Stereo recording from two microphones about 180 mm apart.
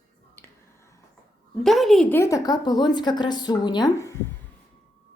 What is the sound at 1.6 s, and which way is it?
A woman's voice, centre (ahead or behind).